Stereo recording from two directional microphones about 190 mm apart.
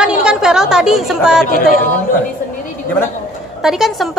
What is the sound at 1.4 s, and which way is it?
Speech, 50° left (ahead or behind).